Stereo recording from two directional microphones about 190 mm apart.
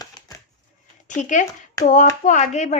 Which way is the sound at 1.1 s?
40° left (ahead or behind).